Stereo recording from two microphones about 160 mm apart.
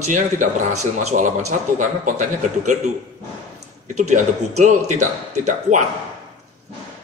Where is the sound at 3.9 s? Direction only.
45° right (ahead or behind).